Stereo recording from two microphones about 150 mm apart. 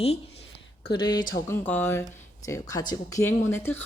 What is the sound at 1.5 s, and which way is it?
Speech, 15° left (ahead or behind).